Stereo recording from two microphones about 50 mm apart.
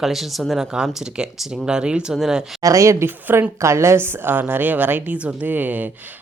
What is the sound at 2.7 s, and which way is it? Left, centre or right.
Speech, right.